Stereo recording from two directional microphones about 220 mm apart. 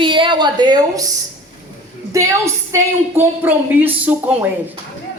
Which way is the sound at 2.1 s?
15° right (ahead or behind).